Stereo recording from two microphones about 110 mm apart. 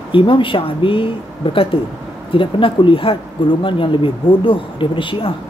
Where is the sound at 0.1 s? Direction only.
50° left (ahead or behind).